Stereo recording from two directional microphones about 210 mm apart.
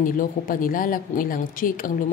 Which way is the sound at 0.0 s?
40° left (ahead or behind).